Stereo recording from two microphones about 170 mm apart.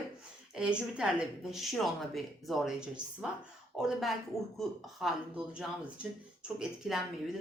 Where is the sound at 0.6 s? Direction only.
5° right (ahead or behind).